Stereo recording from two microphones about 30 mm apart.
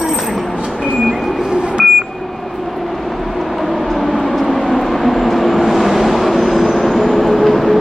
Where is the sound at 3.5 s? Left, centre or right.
Centre.